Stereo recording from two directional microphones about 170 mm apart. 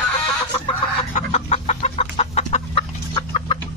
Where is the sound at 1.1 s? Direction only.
40° left (ahead or behind).